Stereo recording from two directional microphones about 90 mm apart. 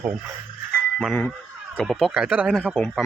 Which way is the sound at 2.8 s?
25° left (ahead or behind).